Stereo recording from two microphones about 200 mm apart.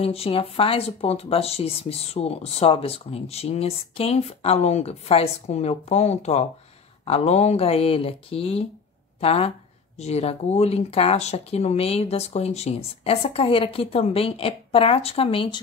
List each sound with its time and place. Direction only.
0.0 s speech: 30° left (ahead or behind)